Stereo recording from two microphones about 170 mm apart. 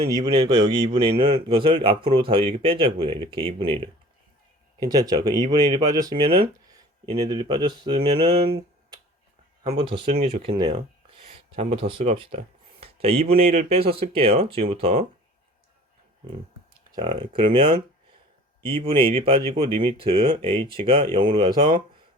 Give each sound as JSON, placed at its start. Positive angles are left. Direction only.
{"t": 0.3, "sound": "speech", "side_deg": -25}
{"t": 17.0, "sound": "speech", "side_deg": -30}